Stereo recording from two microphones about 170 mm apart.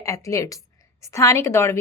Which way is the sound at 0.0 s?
20° left (ahead or behind).